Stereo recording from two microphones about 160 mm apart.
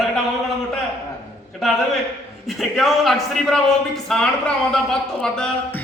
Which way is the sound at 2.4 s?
Centre (ahead or behind).